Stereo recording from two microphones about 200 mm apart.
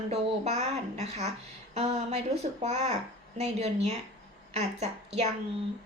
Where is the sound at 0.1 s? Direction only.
35° right (ahead or behind).